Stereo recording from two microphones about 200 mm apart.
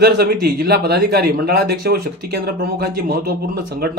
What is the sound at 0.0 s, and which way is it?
Speech, 50° right (ahead or behind).